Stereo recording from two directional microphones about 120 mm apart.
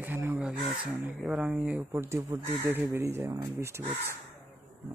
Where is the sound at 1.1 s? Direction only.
5° right (ahead or behind); by 3.8 s 20° right (ahead or behind).